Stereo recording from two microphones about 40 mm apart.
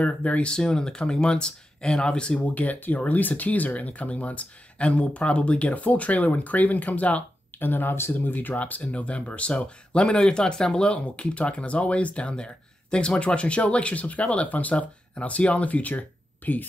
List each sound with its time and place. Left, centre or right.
0.0 s speech: left
0.5 s speech: left
2.4 s speech: left
7.5 s speech: left
8.1 s speech: left